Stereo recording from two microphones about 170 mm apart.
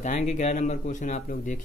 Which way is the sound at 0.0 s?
45° left (ahead or behind).